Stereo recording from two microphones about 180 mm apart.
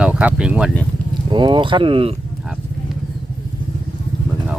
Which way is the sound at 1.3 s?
25° right (ahead or behind).